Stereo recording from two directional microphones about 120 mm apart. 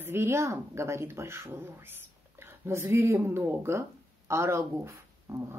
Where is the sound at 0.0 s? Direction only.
20° right (ahead or behind).